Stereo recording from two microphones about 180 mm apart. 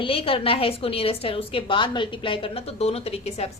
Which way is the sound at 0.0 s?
30° left (ahead or behind).